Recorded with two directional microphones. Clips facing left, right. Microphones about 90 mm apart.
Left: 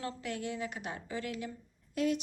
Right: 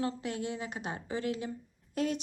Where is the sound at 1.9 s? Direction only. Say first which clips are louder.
Left 1 dB; 35° right (ahead or behind).